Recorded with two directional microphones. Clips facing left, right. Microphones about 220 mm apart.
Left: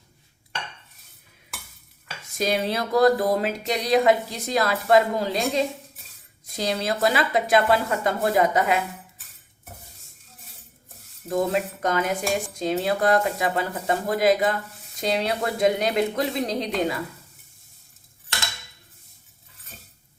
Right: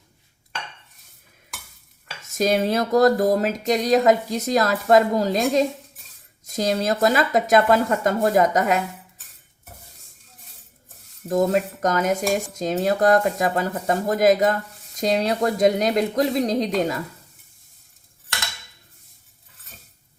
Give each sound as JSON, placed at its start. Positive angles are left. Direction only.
{"t": 2.3, "sound": "speech", "side_deg": -45}
{"t": 11.3, "sound": "speech", "side_deg": -45}